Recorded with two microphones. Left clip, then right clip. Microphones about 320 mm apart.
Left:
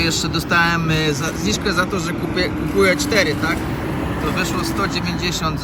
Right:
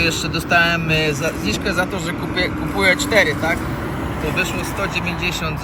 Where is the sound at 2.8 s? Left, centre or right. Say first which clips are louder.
Right 2 dB; left.